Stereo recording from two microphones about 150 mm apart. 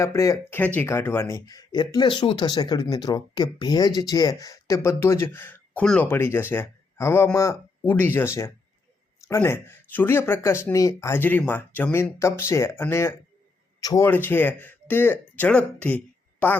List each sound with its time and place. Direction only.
0.0 s speech: 20° left (ahead or behind)
14.1 s speech: 10° left (ahead or behind)